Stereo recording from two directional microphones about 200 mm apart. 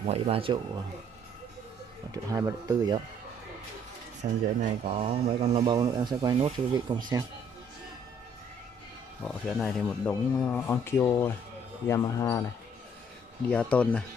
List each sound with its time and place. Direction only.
0.0 s speech: 30° right (ahead or behind)
2.3 s speech: 15° right (ahead or behind)
4.2 s speech: 35° right (ahead or behind)
9.2 s speech: centre (ahead or behind)
13.5 s speech: 5° left (ahead or behind)